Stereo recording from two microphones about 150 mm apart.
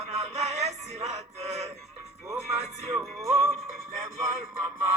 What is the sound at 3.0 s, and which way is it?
Music, 20° right (ahead or behind).